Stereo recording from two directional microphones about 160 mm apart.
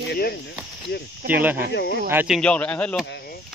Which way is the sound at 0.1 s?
80° left.